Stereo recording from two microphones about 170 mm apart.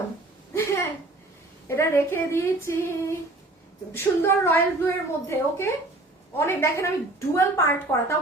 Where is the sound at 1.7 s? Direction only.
15° left (ahead or behind).